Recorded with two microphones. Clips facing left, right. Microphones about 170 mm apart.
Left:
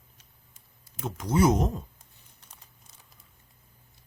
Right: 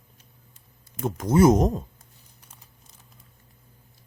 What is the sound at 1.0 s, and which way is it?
Speech, 50° right (ahead or behind).